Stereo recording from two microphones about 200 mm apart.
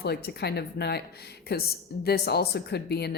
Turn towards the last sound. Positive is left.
turn(degrees=55)  # may be behind; listen again after turning